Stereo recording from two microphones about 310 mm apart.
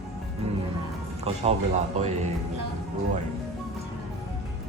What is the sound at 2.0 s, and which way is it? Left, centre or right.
Speech, right.